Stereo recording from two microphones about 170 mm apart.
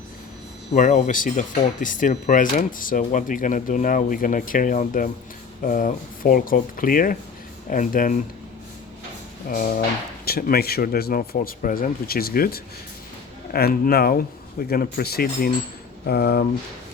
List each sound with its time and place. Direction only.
0.7 s speech: 45° left (ahead or behind)
9.5 s speech: 55° left (ahead or behind)